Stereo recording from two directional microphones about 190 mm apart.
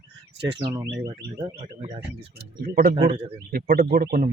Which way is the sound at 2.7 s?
50° right (ahead or behind).